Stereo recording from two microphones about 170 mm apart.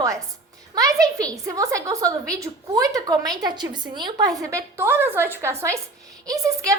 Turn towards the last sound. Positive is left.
turn(degrees=-20)  # may be behind; listen again after turning